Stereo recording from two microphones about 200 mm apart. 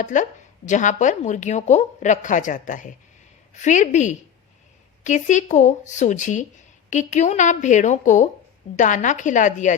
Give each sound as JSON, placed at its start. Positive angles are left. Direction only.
{"t": 0.0, "sound": "speech", "side_deg": 40}